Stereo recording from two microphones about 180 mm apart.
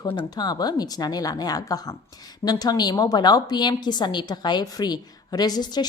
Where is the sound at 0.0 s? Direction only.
25° left (ahead or behind).